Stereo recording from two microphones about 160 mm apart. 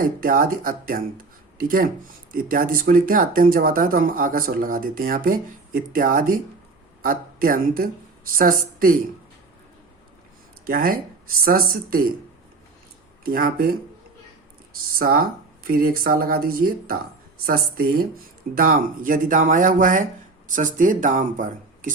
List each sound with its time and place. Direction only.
0.0 s speech: 60° right (ahead or behind)
10.7 s speech: 65° right (ahead or behind)
13.2 s speech: 65° right (ahead or behind)
14.9 s speech: 65° right (ahead or behind)